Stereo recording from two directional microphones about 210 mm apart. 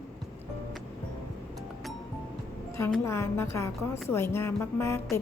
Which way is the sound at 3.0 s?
15° left (ahead or behind).